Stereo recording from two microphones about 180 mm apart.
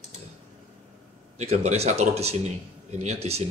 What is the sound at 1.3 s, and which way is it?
Speech, 35° right (ahead or behind).